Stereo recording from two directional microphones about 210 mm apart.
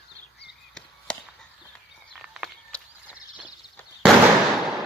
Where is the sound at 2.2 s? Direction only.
Centre (ahead or behind).